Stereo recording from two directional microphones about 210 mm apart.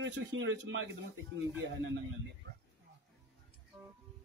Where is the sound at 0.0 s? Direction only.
60° right (ahead or behind).